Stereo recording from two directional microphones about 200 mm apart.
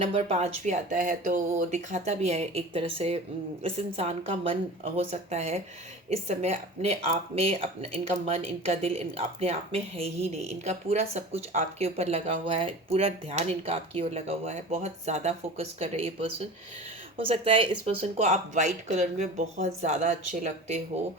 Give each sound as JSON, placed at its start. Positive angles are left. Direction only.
{"t": 0.3, "sound": "a woman's voice", "side_deg": -30}